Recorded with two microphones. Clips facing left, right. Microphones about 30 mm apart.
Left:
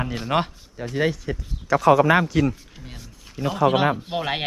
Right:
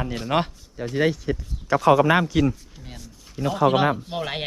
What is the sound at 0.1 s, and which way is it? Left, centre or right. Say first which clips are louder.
Speech: even; centre.